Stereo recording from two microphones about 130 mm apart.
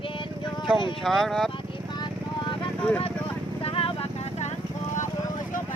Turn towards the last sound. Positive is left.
turn(degrees=45)  # may be behind; listen again after turning